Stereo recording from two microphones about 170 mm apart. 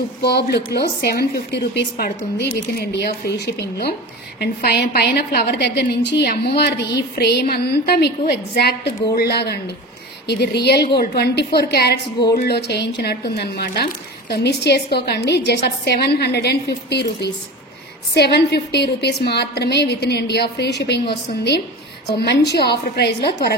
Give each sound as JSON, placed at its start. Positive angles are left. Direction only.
{"t": 0.2, "sound": "a woman's voice", "side_deg": 75}